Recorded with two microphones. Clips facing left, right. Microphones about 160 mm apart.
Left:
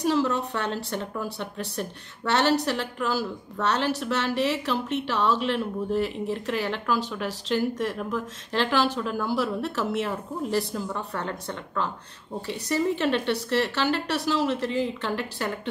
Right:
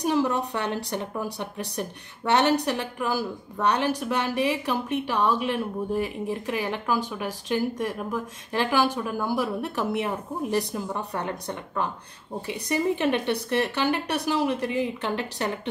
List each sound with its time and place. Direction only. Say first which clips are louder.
0.0 s a woman's voice: even; 15° right (ahead or behind)